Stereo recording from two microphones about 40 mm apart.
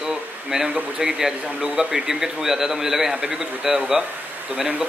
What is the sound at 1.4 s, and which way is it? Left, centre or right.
Speech, right.